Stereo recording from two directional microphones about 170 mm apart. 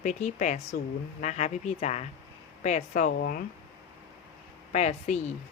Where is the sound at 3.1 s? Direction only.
60° left (ahead or behind).